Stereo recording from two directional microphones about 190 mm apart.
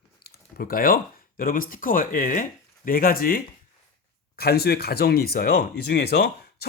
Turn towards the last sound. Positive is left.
turn(degrees=60)  # may be behind; listen again after turning